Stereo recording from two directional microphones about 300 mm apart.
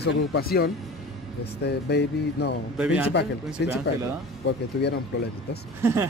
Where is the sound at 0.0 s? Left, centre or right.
Left.